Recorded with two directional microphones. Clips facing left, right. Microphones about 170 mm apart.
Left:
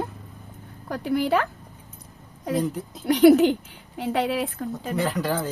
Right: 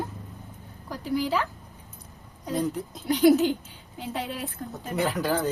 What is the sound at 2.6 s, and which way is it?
Speech, centre (ahead or behind).